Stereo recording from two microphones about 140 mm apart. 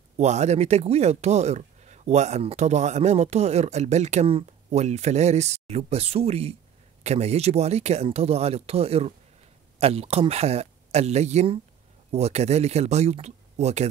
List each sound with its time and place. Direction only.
0.2 s speech: 55° right (ahead or behind)